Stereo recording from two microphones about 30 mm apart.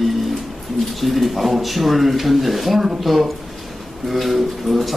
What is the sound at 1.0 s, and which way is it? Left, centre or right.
Speech, centre.